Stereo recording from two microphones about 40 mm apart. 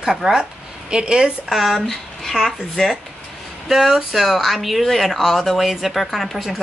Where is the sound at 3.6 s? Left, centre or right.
Centre.